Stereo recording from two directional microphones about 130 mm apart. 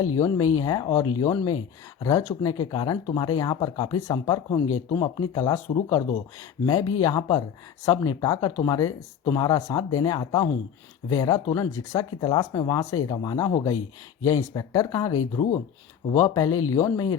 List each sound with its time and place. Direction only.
0.2 s speech: 25° left (ahead or behind)